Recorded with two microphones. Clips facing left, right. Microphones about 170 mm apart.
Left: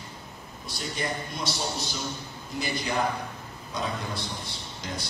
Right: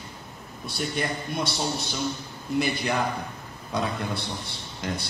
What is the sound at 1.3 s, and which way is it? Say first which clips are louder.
A man's voice: right 4 dB; 60° right (ahead or behind).